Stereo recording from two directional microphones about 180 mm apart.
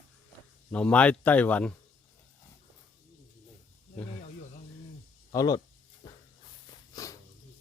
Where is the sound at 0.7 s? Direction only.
5° left (ahead or behind).